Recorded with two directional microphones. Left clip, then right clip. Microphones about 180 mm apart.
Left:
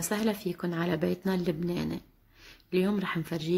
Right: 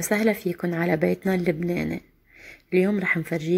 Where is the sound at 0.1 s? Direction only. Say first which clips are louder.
Right 9 dB; 20° right (ahead or behind).